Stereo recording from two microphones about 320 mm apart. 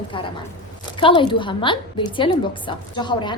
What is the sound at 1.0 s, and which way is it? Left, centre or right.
A woman's voice, centre.